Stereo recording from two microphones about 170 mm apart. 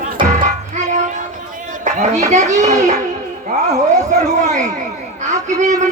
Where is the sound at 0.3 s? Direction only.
45° right (ahead or behind).